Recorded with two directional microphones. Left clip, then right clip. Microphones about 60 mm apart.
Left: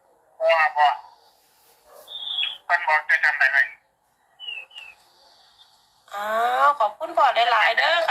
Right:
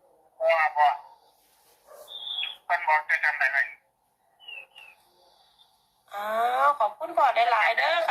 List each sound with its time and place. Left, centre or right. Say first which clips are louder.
0.3 s a sound: left 4 dB; left
2.0 s telephone: left 6 dB; left
4.4 s bird: left 8 dB; left
6.1 s speech: left 3 dB; left